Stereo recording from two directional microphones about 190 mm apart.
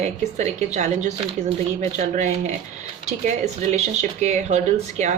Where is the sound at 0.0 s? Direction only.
35° right (ahead or behind).